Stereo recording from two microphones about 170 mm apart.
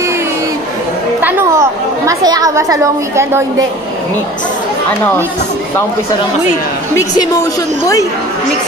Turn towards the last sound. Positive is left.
turn(degrees=20)  # may be behind; listen again after turning